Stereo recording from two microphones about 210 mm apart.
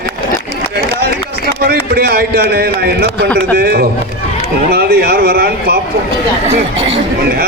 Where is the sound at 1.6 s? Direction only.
45° right (ahead or behind).